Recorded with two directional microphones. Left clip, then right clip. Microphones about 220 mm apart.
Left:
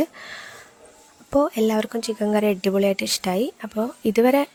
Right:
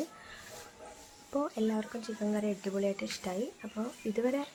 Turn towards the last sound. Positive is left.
turn(degrees=50)  # may be behind; listen again after turning